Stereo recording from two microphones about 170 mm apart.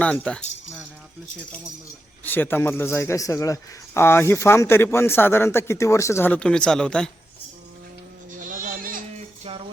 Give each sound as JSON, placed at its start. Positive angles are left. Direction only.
{"t": 0.0, "sound": "a sound", "side_deg": 5}
{"t": 2.2, "sound": "a man's voice", "side_deg": 10}
{"t": 8.4, "sound": "goat", "side_deg": -50}
{"t": 9.5, "sound": "music", "side_deg": -35}